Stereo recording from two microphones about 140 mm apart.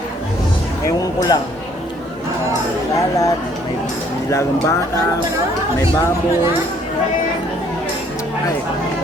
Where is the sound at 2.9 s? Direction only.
25° left (ahead or behind).